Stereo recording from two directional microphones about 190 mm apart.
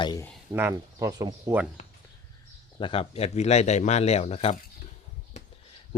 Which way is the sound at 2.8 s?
30° left (ahead or behind).